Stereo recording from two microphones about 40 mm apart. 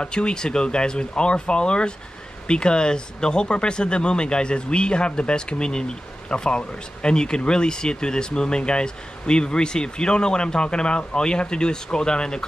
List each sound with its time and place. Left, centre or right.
0.0 s speech: left